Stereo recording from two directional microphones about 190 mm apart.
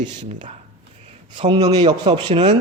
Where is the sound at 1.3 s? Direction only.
25° right (ahead or behind).